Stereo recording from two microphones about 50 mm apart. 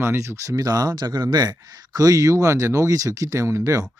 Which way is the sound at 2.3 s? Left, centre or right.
Right.